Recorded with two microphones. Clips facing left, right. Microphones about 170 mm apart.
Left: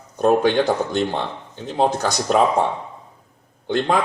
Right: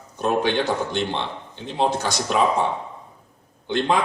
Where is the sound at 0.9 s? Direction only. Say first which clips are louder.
Left 3 dB; 40° left (ahead or behind).